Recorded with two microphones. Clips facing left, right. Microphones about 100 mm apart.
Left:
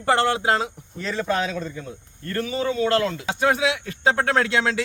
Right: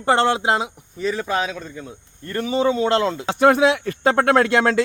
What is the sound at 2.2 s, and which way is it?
Speech, 20° right (ahead or behind).